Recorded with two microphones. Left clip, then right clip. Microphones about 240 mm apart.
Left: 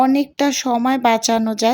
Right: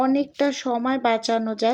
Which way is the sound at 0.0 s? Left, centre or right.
Left.